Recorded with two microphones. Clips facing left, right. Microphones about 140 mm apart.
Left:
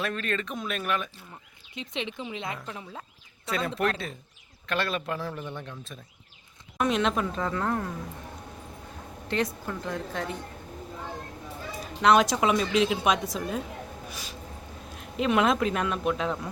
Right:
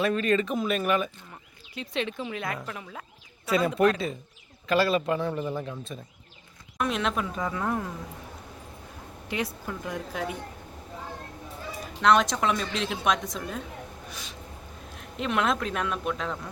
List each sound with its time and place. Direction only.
0.0 s a woman's voice: 5° right (ahead or behind)
1.7 s speech: 20° left (ahead or behind)
3.5 s a woman's voice: 5° right (ahead or behind)
9.3 s speech: 10° right (ahead or behind)
12.0 s a woman's voice: 5° left (ahead or behind)
15.2 s a woman's voice: centre (ahead or behind)